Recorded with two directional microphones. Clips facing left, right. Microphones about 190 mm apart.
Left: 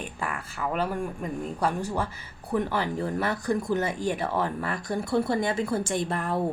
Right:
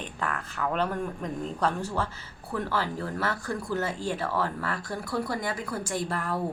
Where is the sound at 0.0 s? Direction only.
10° left (ahead or behind).